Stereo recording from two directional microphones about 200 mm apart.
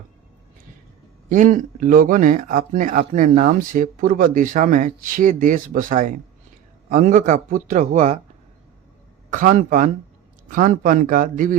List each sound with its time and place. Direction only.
1.3 s speech: 40° right (ahead or behind)
9.3 s speech: 40° right (ahead or behind)